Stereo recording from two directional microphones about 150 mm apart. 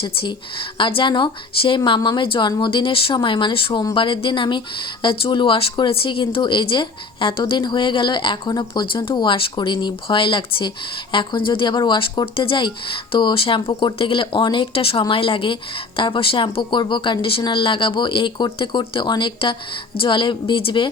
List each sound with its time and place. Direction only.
0.0 s speech: 35° left (ahead or behind)